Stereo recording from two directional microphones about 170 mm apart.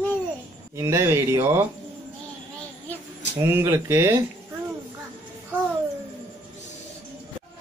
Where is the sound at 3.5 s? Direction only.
15° right (ahead or behind).